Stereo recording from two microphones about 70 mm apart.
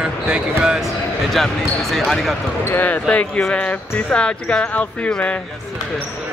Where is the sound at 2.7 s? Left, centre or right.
Left.